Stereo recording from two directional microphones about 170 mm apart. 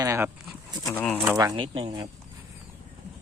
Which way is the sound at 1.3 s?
25° right (ahead or behind).